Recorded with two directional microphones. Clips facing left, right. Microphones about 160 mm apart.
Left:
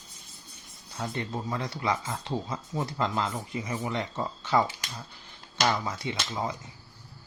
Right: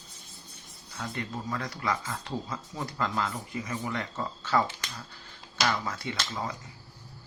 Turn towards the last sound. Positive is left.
turn(degrees=20)  # may be behind; listen again after turning